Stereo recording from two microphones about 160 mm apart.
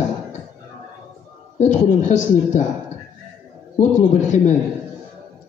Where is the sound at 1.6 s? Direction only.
50° left (ahead or behind).